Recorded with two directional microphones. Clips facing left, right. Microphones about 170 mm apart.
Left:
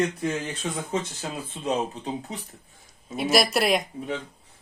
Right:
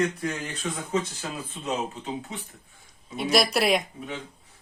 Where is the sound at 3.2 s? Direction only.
Centre (ahead or behind).